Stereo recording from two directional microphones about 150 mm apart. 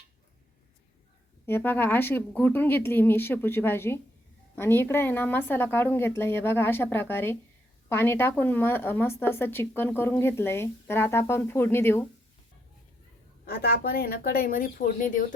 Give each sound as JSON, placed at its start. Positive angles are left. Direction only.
{"t": 1.5, "sound": "a woman's voice", "side_deg": 15}
{"t": 13.4, "sound": "speech", "side_deg": 80}